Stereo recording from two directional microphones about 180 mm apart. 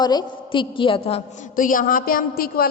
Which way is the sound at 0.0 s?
25° left (ahead or behind).